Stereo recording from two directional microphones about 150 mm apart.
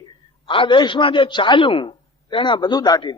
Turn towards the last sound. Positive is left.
turn(degrees=30)  # may be behind; listen again after turning